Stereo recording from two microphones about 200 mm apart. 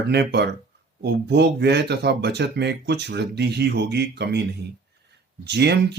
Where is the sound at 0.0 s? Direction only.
55° right (ahead or behind).